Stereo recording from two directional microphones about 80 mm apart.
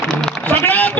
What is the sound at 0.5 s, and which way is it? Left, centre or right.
Speech, left.